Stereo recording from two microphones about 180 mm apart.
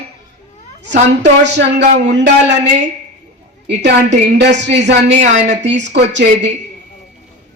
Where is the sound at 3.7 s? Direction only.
75° right (ahead or behind).